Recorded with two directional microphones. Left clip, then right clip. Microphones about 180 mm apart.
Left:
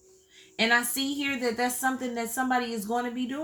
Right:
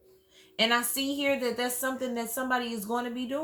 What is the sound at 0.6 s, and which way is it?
A woman's voice, 30° right (ahead or behind).